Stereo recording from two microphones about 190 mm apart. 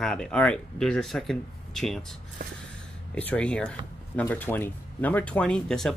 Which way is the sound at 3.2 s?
5° left (ahead or behind).